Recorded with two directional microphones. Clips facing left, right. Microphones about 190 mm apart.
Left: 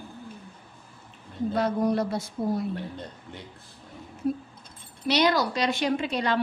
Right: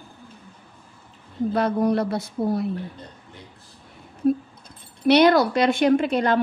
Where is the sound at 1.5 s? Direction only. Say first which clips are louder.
Right 3 dB; 60° right (ahead or behind).